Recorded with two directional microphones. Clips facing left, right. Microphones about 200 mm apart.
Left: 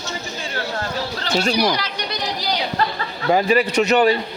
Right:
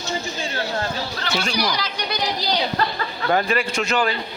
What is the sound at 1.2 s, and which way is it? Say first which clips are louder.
Speech: left 6 dB; 40° left (ahead or behind).